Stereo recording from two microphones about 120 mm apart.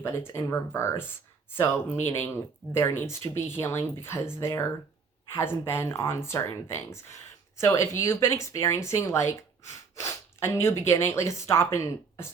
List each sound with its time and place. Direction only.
0.0 s speech: 20° left (ahead or behind)